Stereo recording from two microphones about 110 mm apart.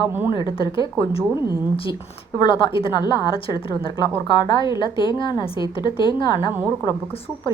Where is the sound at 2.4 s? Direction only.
50° left (ahead or behind).